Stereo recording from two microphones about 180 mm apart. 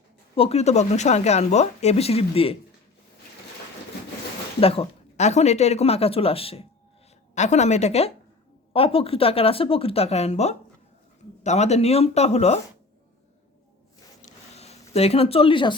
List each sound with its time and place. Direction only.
0.3 s speech: 35° left (ahead or behind)
4.6 s speech: 30° left (ahead or behind)
14.2 s a sound: 35° left (ahead or behind)